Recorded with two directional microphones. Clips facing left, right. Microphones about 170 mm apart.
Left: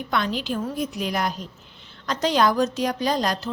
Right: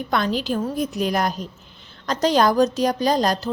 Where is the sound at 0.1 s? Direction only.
40° right (ahead or behind).